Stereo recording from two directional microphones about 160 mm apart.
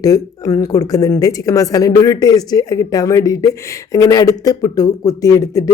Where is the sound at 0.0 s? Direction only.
20° left (ahead or behind).